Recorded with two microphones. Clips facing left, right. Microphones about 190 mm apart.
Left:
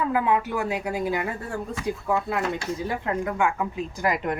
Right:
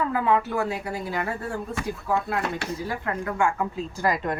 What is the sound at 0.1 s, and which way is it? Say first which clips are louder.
A woman's voice: even; 15° left (ahead or behind).